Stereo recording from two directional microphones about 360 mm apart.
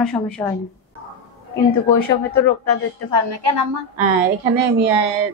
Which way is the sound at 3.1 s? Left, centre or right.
Right.